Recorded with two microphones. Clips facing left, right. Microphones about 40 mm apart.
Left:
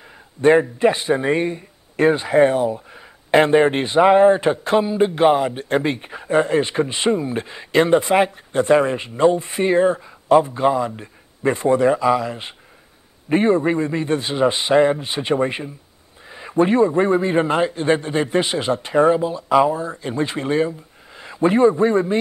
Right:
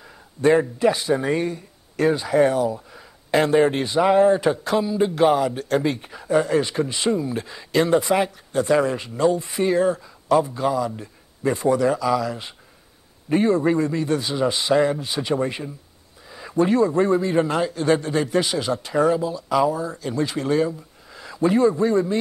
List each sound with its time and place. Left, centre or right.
0.4 s a man's voice: left